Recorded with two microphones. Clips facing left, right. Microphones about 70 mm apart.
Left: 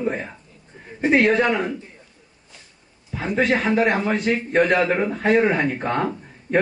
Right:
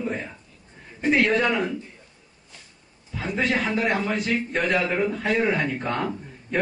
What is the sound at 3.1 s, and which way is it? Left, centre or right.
Speech, left.